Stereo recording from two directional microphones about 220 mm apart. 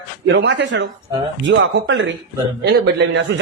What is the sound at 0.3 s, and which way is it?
Speech, 55° right (ahead or behind).